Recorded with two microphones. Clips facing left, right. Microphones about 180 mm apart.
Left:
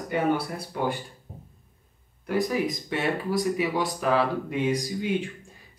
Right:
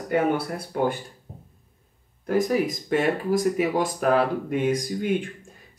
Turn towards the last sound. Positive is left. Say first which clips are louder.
# right 2 dB
turn(degrees=-55)  # may be behind; listen again after turning